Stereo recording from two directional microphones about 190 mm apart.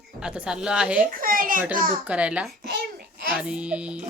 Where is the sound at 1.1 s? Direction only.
45° right (ahead or behind).